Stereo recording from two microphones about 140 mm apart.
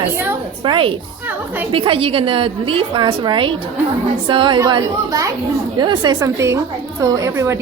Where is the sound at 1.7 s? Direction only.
40° right (ahead or behind).